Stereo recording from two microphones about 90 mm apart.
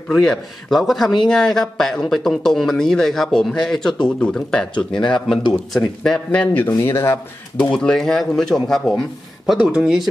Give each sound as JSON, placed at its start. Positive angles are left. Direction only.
{"t": 0.1, "sound": "a man's voice", "side_deg": 5}
{"t": 4.9, "sound": "speech", "side_deg": 65}
{"t": 5.5, "sound": "speech", "side_deg": 5}
{"t": 6.8, "sound": "speech", "side_deg": 30}
{"t": 7.5, "sound": "a man's voice", "side_deg": 5}
{"t": 9.5, "sound": "speech", "side_deg": -10}